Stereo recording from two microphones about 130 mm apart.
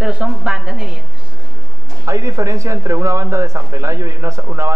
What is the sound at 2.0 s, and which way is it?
A man's voice, 25° right (ahead or behind).